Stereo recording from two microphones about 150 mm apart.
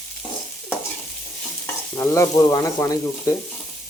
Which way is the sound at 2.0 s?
20° left (ahead or behind).